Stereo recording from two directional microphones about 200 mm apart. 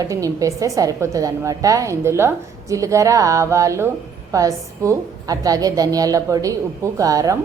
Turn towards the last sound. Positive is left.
turn(degrees=-15)  # may be behind; listen again after turning